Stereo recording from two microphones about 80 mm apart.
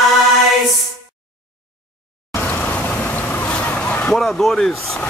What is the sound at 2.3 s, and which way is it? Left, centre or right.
Vehicle, left.